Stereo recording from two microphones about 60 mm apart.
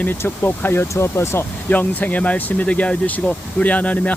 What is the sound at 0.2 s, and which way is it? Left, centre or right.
Speech, left.